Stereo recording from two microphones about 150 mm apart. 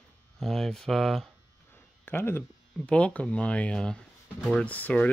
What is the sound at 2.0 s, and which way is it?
Speech, 15° left (ahead or behind).